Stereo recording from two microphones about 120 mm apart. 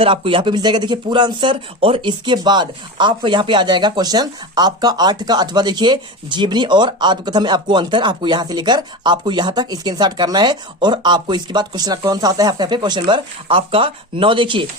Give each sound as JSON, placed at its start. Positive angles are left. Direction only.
{"t": 0.0, "sound": "speech", "side_deg": -50}